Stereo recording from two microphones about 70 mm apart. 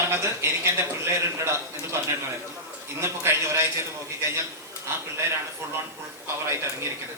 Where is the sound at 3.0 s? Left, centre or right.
Right.